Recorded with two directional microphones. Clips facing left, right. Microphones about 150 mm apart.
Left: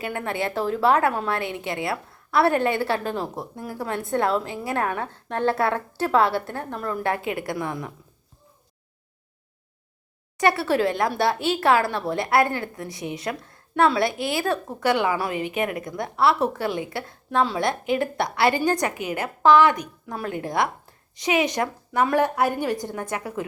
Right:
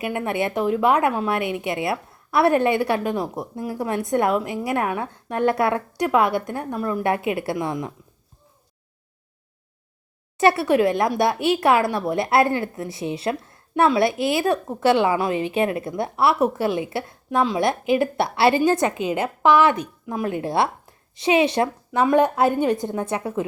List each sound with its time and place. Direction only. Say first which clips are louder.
0.0 s a woman's voice: right 3 dB; 20° right (ahead or behind)
10.3 s a woman's voice: right 4 dB; 25° right (ahead or behind)